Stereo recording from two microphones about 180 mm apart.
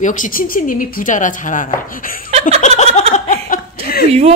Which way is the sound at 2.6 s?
35° left (ahead or behind).